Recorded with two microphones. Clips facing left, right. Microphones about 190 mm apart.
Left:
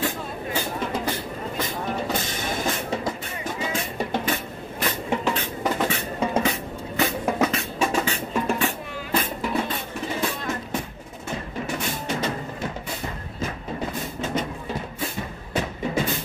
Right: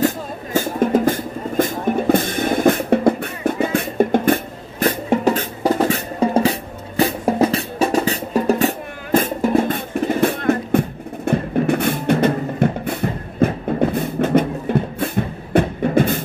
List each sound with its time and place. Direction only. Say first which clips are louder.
0.0 s music: right 8 dB; 45° right (ahead or behind)